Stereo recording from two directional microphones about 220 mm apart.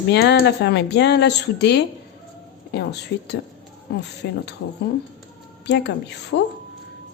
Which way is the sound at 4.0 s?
50° left (ahead or behind).